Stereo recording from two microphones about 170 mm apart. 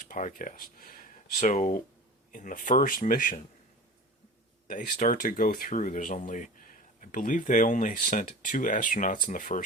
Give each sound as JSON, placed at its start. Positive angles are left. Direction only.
{"t": 0.1, "sound": "speech", "side_deg": 50}
{"t": 4.7, "sound": "speech", "side_deg": 50}